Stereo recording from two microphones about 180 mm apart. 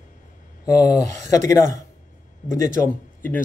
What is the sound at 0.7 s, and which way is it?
A man's voice, 20° left (ahead or behind).